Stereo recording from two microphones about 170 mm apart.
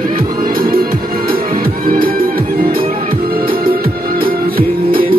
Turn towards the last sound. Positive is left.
turn(degrees=-60)  # may be behind; listen again after turning